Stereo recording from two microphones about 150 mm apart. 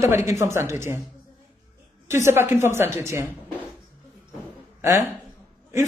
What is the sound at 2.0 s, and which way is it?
A woman's voice, 15° right (ahead or behind).